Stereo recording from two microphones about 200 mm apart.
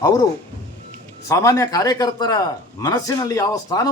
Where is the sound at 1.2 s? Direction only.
15° left (ahead or behind).